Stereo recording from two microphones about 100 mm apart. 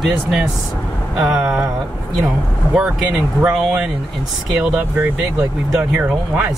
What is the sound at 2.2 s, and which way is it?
Speech, 5° right (ahead or behind).